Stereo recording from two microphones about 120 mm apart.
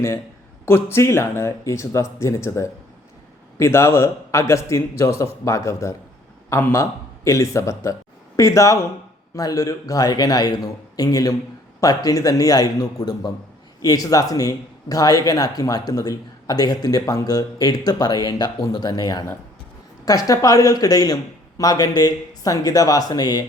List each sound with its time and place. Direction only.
0.6 s a man's voice: 20° left (ahead or behind)